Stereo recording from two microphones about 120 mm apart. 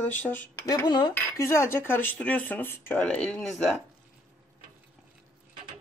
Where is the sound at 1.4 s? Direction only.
20° left (ahead or behind); by 3.8 s 5° left (ahead or behind).